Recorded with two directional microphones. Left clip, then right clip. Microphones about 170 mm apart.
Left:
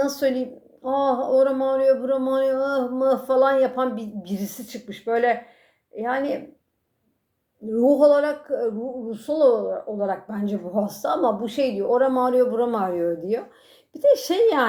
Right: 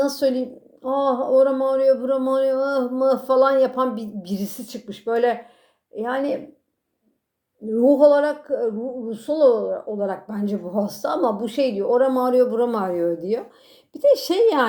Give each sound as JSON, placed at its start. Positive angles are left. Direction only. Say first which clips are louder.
{"t": 0.0, "sound": "speech", "louder": "right 2 dB", "side_deg": -35}
{"t": 7.7, "sound": "speech", "louder": "right 2 dB", "side_deg": -30}